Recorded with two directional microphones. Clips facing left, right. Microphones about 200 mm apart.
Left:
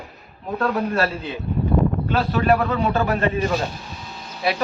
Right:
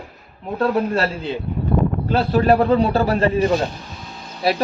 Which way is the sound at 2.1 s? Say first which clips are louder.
Right 4 dB; 30° right (ahead or behind).